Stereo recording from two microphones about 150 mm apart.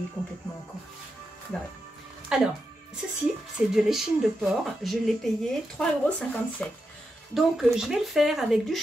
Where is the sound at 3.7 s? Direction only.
Centre (ahead or behind).